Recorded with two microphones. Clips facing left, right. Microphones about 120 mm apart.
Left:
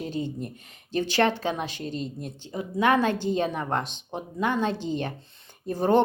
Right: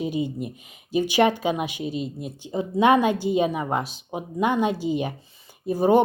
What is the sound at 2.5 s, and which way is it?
Speech, 20° right (ahead or behind).